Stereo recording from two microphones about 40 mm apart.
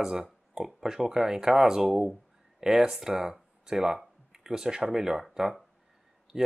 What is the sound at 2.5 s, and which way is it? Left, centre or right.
Speech, centre.